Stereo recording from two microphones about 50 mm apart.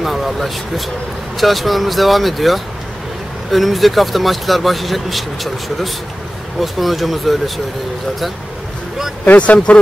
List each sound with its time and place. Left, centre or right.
0.0 s speech: centre
9.2 s speech: left